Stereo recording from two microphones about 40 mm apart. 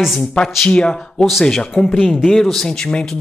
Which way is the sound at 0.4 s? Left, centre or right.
Left.